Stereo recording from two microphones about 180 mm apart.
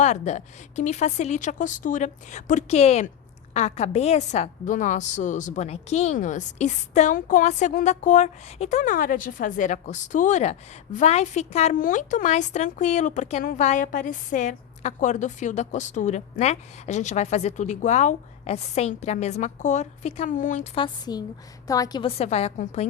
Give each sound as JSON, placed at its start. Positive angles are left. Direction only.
{"t": 0.0, "sound": "a woman's voice", "side_deg": 40}
{"t": 20.7, "sound": "a woman's voice", "side_deg": 25}
{"t": 22.0, "sound": "a woman's voice", "side_deg": 35}